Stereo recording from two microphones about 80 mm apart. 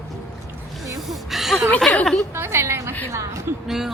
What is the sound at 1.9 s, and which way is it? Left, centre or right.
Speech, centre.